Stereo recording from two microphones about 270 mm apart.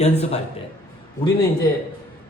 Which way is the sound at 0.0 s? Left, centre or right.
Left.